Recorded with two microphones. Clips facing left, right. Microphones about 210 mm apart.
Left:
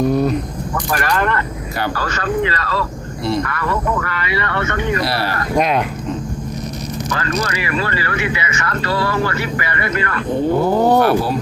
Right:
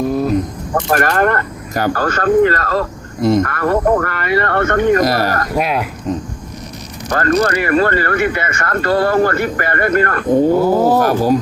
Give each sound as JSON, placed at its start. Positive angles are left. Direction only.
{"t": 0.0, "sound": "speech", "side_deg": 0}
{"t": 0.9, "sound": "speech", "side_deg": -45}
{"t": 5.5, "sound": "speech", "side_deg": -5}
{"t": 7.1, "sound": "speech", "side_deg": -50}
{"t": 10.6, "sound": "speech", "side_deg": 0}
{"t": 11.0, "sound": "speech", "side_deg": -45}